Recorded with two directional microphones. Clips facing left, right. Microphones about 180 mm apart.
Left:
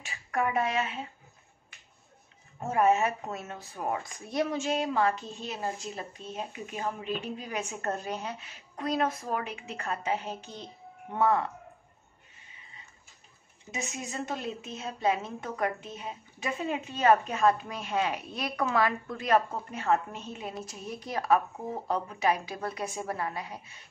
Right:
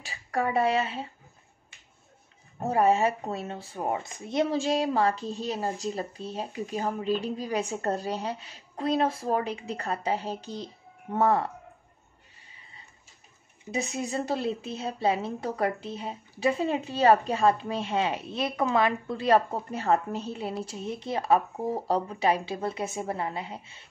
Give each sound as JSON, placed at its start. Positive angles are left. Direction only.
{"t": 0.0, "sound": "speech", "side_deg": -35}
{"t": 2.6, "sound": "speech", "side_deg": -35}
{"t": 13.7, "sound": "speech", "side_deg": -35}